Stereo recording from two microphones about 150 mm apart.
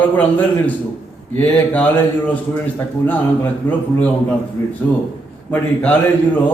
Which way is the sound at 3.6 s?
10° left (ahead or behind).